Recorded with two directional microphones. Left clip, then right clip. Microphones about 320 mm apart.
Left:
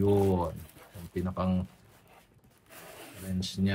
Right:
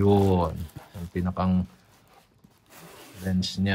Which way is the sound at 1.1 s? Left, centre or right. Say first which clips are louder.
Right 4 dB; right.